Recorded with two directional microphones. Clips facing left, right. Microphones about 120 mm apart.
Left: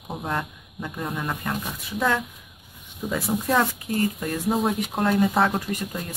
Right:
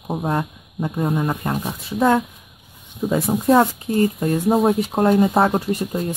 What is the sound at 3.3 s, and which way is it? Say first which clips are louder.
Speech: right 7 dB; 30° right (ahead or behind).